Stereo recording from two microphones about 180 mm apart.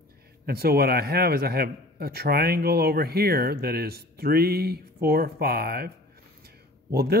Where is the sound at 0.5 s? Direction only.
60° right (ahead or behind).